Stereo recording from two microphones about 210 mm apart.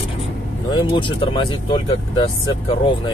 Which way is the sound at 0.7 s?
25° left (ahead or behind).